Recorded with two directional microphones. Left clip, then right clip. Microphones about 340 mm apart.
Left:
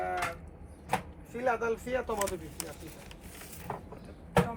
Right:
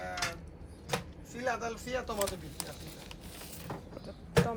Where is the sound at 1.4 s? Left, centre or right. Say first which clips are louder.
Left 5 dB; centre.